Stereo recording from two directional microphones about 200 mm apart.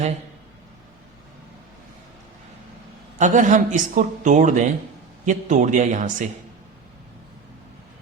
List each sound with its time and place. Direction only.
3.2 s a woman's voice: 40° right (ahead or behind)